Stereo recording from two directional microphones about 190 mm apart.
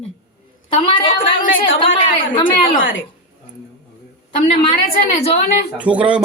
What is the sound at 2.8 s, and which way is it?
Speech, 90° left.